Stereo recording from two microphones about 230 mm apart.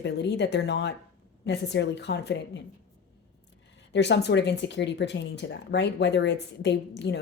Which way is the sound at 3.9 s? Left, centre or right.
Left.